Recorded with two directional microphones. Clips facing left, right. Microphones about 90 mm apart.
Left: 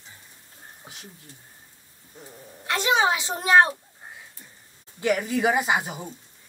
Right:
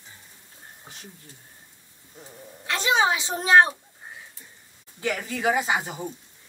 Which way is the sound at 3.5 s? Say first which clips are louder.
Even; 25° right (ahead or behind).